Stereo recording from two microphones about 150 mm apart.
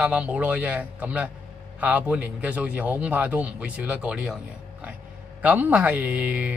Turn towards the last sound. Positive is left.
turn(degrees=-10)  # may be behind; listen again after turning